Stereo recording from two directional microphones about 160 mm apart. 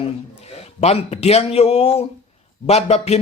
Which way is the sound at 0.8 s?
40° left (ahead or behind).